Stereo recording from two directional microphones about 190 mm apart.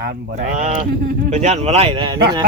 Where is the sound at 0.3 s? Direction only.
40° right (ahead or behind).